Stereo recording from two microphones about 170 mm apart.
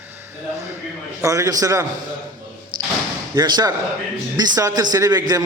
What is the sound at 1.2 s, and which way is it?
Speech, 20° right (ahead or behind).